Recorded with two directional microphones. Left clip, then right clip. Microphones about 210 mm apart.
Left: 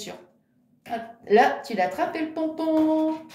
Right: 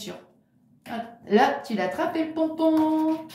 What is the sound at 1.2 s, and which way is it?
Speech, 50° left (ahead or behind).